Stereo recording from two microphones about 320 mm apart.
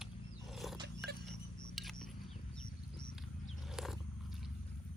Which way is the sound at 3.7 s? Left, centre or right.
Centre.